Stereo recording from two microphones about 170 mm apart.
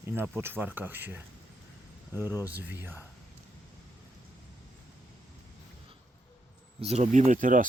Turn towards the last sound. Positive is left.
turn(degrees=-50)  # may be behind; listen again after turning